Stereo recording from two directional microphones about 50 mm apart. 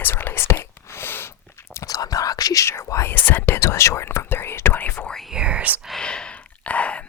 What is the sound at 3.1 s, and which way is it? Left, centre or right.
Whispering, left.